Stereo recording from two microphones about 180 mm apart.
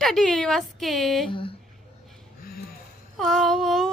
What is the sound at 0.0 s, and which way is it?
Speech, centre (ahead or behind).